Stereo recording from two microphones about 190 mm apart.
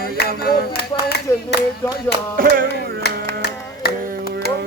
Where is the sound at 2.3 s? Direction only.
50° right (ahead or behind).